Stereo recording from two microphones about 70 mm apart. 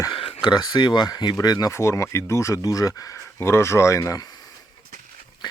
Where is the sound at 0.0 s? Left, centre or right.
Left.